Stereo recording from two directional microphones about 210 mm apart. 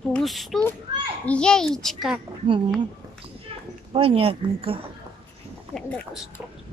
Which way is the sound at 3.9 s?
25° right (ahead or behind).